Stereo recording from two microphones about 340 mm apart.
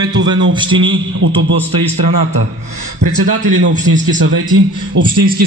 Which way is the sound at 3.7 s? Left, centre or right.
Right.